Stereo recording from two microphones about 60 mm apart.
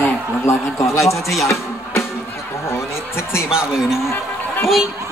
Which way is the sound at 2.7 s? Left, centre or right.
Left.